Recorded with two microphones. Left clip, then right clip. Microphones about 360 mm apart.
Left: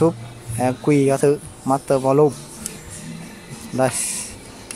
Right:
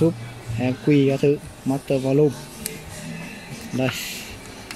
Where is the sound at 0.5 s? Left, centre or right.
Left.